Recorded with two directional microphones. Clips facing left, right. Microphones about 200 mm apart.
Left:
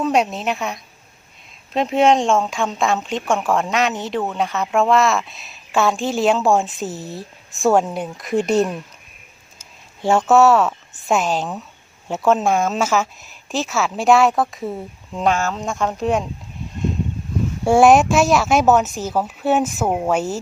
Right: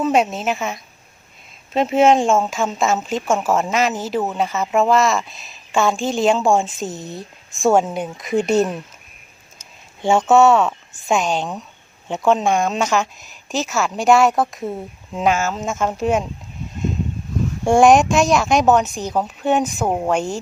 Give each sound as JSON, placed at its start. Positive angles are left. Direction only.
{"t": 0.0, "sound": "speech", "side_deg": 0}
{"t": 10.0, "sound": "speech", "side_deg": 0}
{"t": 17.7, "sound": "speech", "side_deg": 5}